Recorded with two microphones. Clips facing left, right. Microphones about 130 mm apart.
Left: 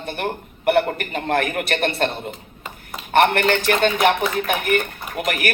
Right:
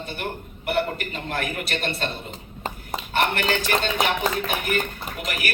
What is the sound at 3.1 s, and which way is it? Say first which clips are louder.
Speech: left 7 dB; 60° left (ahead or behind).